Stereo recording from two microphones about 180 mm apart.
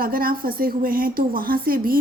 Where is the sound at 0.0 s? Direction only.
55° right (ahead or behind).